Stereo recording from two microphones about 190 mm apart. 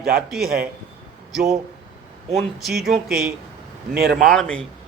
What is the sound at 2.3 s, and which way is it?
Speech, centre (ahead or behind).